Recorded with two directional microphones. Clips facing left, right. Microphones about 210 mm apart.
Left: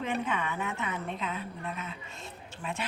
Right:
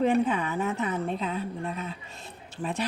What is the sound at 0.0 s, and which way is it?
Speech, 35° right (ahead or behind).